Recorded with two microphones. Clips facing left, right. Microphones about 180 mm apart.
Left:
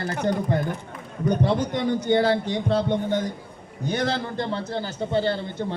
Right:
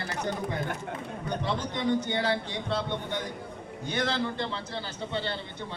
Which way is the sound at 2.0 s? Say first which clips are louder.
Left 9 dB; 45° left (ahead or behind).